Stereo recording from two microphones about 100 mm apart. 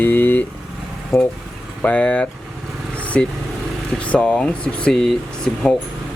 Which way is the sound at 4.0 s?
10° left (ahead or behind).